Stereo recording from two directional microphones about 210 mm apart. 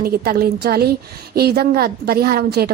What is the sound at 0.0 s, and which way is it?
A woman's voice, 45° right (ahead or behind).